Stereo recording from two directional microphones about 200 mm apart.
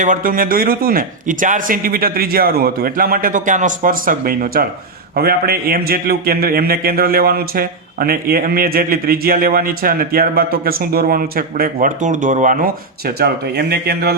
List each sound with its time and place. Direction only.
0.0 s a man's voice: 40° right (ahead or behind)